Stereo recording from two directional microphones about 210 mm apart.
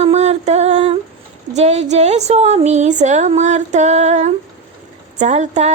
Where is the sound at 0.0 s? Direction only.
30° right (ahead or behind).